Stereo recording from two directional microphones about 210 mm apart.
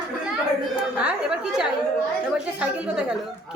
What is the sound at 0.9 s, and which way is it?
A woman's voice, 5° right (ahead or behind).